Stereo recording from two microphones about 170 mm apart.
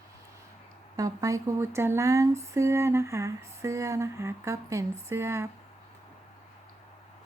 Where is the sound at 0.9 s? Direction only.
20° right (ahead or behind).